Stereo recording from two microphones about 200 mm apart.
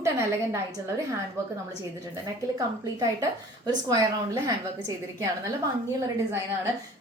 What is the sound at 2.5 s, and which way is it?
Speech, 15° right (ahead or behind).